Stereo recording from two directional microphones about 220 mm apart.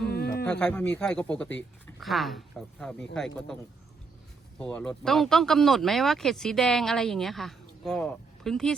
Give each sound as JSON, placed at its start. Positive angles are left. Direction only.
{"t": 0.0, "sound": "music", "side_deg": 45}
{"t": 0.4, "sound": "speech", "side_deg": 5}